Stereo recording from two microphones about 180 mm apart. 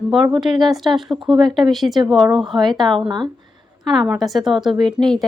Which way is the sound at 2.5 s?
25° right (ahead or behind).